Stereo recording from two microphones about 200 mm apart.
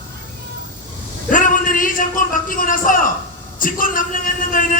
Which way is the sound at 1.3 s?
40° left (ahead or behind).